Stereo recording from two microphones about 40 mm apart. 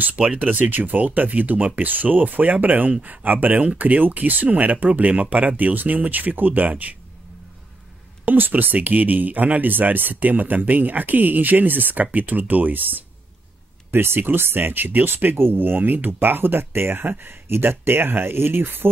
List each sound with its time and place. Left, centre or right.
0.2 s speech: right
8.3 s speech: right
13.9 s speech: right
15.3 s speech: right